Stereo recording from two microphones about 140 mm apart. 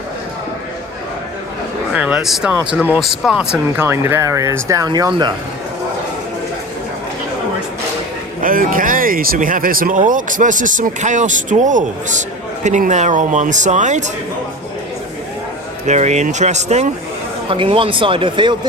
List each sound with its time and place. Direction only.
1.9 s a sound: 5° right (ahead or behind)
3.0 s speech: 5° right (ahead or behind)
3.8 s speech: 20° right (ahead or behind)
8.4 s speech: 80° right; by 14.0 s 60° right (ahead or behind)
15.9 s speech: 55° right (ahead or behind)
17.5 s speech: 40° right (ahead or behind)